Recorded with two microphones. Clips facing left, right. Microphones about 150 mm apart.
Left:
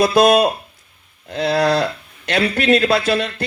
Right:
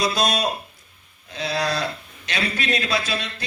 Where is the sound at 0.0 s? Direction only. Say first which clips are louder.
Left 10 dB; 55° left (ahead or behind).